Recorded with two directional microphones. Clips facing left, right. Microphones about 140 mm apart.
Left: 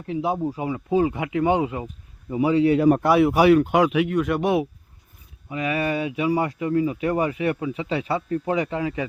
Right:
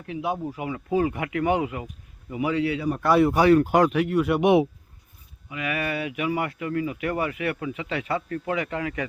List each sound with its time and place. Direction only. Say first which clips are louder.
0.1 s a man's voice: left 4 dB; 30° left (ahead or behind)
3.2 s speech: left 2 dB; 10° left (ahead or behind); by 4.4 s 5° right (ahead or behind)
4.4 s speech: right 6 dB; 20° right (ahead or behind)
5.5 s speech: left 4 dB; 35° left (ahead or behind)
7.9 s speech: left 3 dB; 15° left (ahead or behind)